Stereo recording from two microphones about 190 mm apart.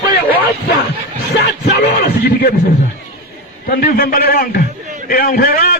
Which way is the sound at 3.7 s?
50° left (ahead or behind).